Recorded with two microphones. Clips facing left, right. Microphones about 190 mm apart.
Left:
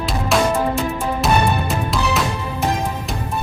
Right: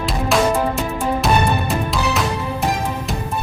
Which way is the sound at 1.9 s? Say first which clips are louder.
Even; centre (ahead or behind).